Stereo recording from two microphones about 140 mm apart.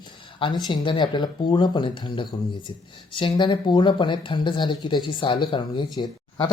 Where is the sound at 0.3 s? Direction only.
35° left (ahead or behind).